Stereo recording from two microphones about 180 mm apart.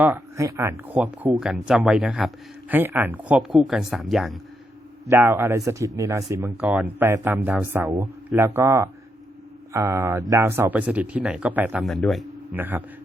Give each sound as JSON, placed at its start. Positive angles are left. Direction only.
{"t": 0.0, "sound": "speech", "side_deg": -15}
{"t": 5.0, "sound": "speech", "side_deg": -15}
{"t": 12.5, "sound": "speech", "side_deg": -10}